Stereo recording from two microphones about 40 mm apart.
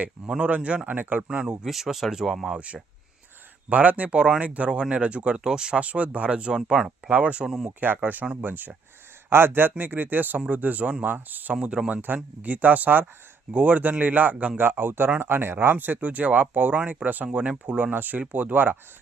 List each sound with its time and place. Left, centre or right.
0.4 s speech: right
0.9 s speech: right
1.3 s speech: right
1.6 s speech: centre
3.7 s speech: right
4.8 s speech: right
5.4 s speech: centre
5.8 s speech: right
6.3 s speech: right
7.1 s speech: right
7.4 s speech: centre
7.8 s speech: right
9.3 s speech: right
14.5 s speech: right